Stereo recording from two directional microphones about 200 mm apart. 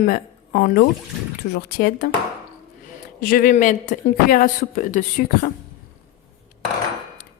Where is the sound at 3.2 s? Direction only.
45° left (ahead or behind).